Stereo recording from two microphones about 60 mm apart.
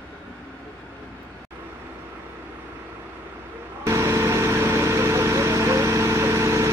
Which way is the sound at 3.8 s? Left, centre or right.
Right.